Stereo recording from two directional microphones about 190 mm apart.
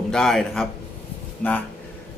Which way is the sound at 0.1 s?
Centre (ahead or behind).